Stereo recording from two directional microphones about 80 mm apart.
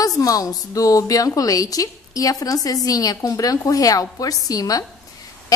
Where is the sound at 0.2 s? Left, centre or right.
Left.